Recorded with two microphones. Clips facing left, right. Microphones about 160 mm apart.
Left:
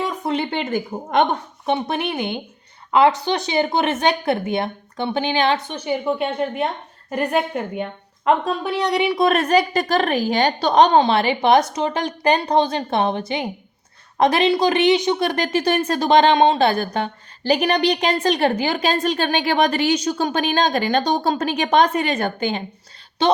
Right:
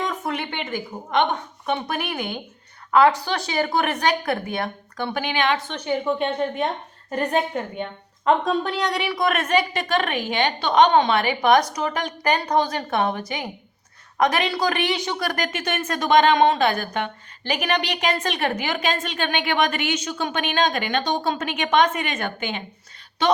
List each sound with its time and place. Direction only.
0.0 s a sound: 15° left (ahead or behind)
0.3 s a woman's voice: 35° left (ahead or behind)
5.6 s a woman's voice: 10° left (ahead or behind)
8.9 s a woman's voice: 20° left (ahead or behind)